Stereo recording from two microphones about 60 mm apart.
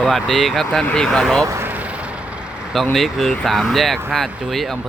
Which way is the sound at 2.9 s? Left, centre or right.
Centre.